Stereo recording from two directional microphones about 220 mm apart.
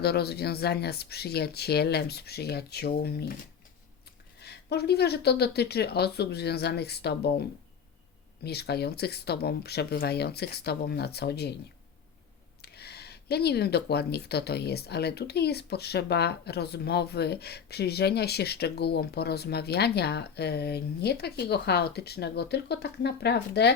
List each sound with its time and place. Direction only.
0.0 s speech: 45° left (ahead or behind)
4.4 s speech: 45° left (ahead or behind)
8.4 s speech: 45° left (ahead or behind)
12.6 s speech: 45° left (ahead or behind)